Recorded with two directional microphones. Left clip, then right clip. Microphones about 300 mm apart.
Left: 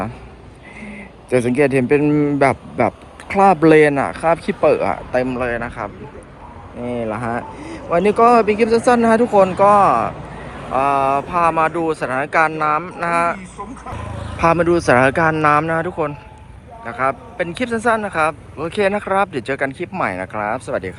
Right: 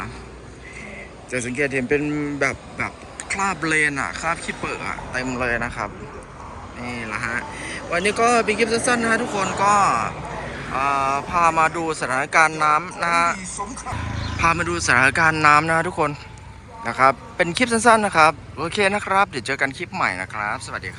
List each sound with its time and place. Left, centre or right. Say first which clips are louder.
1.3 s a man's voice: left 8 dB; centre